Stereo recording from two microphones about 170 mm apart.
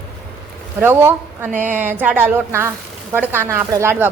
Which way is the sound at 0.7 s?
10° right (ahead or behind).